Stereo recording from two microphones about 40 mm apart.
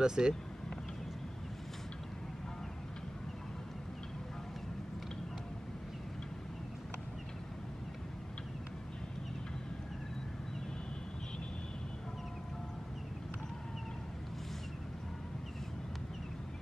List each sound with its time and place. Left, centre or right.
0.0 s speech: centre